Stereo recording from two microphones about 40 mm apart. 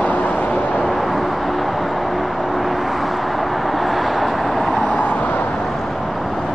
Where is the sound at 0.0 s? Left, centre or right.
Left.